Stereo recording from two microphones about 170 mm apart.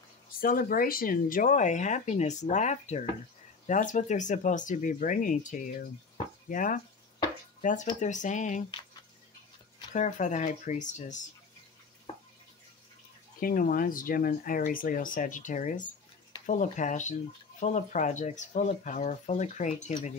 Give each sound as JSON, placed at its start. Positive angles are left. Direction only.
{"t": 0.4, "sound": "speech", "side_deg": 55}
{"t": 8.0, "sound": "speech", "side_deg": 45}
{"t": 9.9, "sound": "speech", "side_deg": 45}
{"t": 13.4, "sound": "speech", "side_deg": 55}